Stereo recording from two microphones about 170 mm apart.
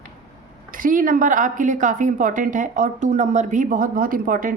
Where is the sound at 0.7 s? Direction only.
55° right (ahead or behind).